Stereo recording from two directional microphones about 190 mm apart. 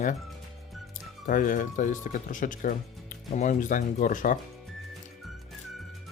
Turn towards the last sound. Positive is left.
turn(degrees=45)  # may be behind; listen again after turning